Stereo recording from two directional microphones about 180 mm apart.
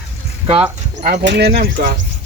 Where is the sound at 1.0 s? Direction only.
70° right (ahead or behind).